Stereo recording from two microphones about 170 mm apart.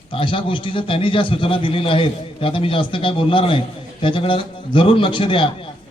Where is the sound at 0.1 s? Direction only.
30° left (ahead or behind).